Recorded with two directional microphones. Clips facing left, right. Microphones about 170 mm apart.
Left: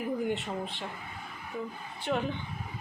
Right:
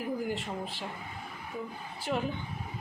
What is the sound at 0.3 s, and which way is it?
Speech, centre (ahead or behind).